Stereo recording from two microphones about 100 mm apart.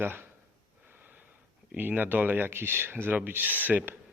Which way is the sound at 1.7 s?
15° right (ahead or behind).